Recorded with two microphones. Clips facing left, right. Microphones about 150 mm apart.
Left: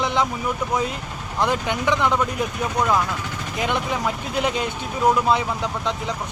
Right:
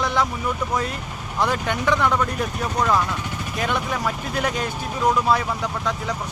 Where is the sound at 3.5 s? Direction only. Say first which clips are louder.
Left 1 dB; 20° left (ahead or behind).